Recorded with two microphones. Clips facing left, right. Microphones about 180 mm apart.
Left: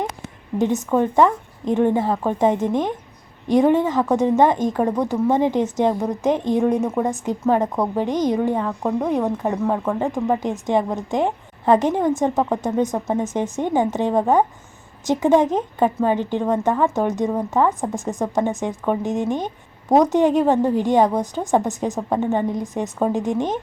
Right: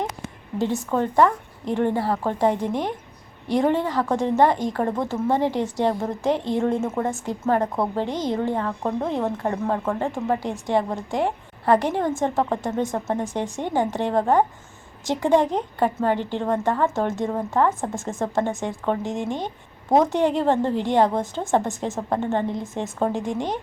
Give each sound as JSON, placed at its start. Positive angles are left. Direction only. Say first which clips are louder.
{"t": 0.6, "sound": "a woman's voice", "louder": "left 4 dB", "side_deg": 20}